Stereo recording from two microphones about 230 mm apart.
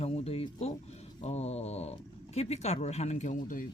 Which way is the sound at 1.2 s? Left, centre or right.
Left.